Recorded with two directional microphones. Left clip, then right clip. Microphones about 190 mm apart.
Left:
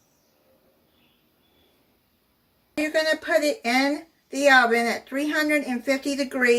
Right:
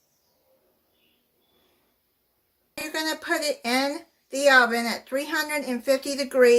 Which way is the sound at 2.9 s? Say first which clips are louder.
Left 5 dB; 50° right (ahead or behind).